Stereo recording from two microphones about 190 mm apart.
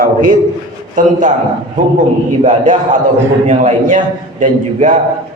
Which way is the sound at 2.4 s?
40° right (ahead or behind).